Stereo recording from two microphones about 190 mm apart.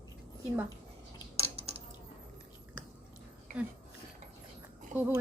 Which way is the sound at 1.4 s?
30° right (ahead or behind).